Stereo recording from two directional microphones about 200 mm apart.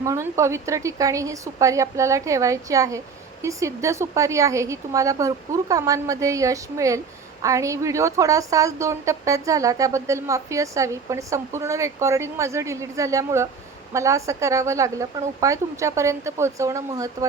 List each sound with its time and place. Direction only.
0.0 s a woman's voice: 15° right (ahead or behind)